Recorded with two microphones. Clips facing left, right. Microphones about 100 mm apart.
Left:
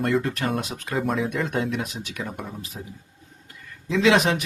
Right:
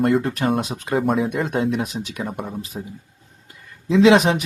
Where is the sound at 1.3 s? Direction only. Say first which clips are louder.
Right 4 dB; 25° right (ahead or behind).